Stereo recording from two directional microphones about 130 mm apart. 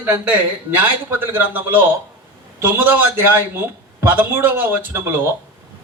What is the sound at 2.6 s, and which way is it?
A man's voice, 15° right (ahead or behind).